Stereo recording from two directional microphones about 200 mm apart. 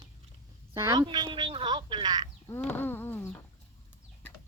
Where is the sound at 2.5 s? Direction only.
10° left (ahead or behind).